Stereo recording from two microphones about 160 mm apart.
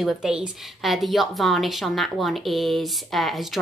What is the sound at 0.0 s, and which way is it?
A woman's voice, 5° right (ahead or behind).